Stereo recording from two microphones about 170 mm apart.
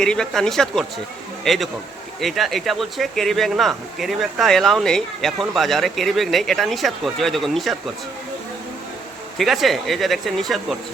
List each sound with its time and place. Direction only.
0.0 s speech: 5° left (ahead or behind)
9.4 s speech: centre (ahead or behind)